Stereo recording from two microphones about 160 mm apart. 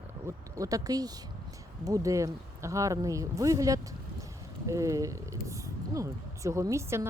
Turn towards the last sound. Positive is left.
turn(degrees=-15)  # may be behind; listen again after turning